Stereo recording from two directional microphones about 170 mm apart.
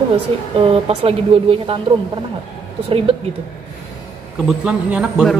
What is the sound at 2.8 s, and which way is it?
Speech, 35° right (ahead or behind).